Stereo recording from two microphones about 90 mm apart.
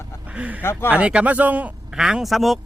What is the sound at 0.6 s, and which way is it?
Speech, 25° left (ahead or behind).